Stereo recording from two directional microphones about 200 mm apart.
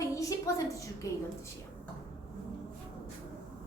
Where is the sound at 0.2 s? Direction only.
15° left (ahead or behind).